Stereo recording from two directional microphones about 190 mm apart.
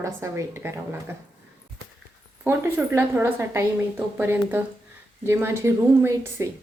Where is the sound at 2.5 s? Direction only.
10° right (ahead or behind).